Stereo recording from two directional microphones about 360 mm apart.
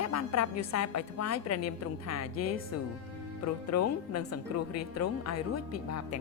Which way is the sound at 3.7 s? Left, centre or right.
Left.